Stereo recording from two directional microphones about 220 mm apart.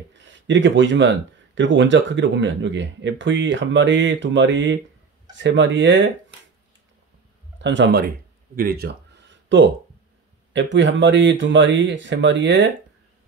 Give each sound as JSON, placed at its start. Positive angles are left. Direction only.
{"t": 0.1, "sound": "speech", "side_deg": -55}
{"t": 7.5, "sound": "speech", "side_deg": -55}
{"t": 8.5, "sound": "a sound", "side_deg": -45}
{"t": 10.5, "sound": "speech", "side_deg": -55}